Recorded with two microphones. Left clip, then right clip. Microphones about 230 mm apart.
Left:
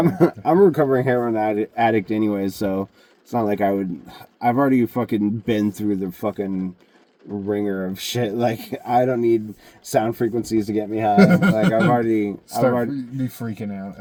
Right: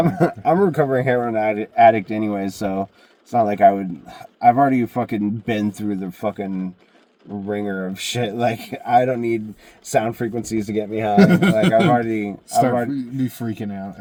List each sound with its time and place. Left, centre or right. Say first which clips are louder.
0.0 s speech: even; centre
7.5 s speech: left 1 dB; centre
11.2 s speech: right 3 dB; centre
12.0 s speech: left 3 dB; centre
12.9 s speech: right 3 dB; centre